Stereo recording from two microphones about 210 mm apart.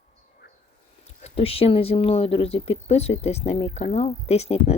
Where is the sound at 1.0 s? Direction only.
30° left (ahead or behind).